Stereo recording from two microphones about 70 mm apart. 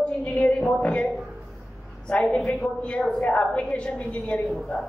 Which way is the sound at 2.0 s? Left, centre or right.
Centre.